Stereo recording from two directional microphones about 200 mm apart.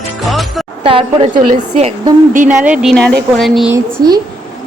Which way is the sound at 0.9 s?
25° right (ahead or behind).